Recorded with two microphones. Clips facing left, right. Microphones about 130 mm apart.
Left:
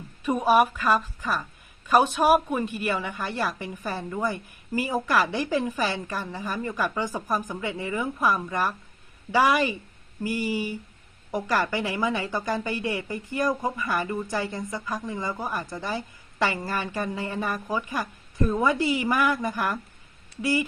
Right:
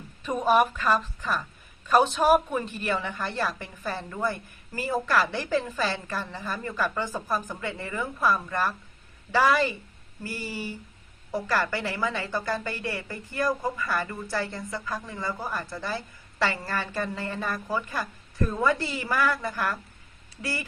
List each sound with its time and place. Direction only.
0.2 s a woman's voice: 10° left (ahead or behind)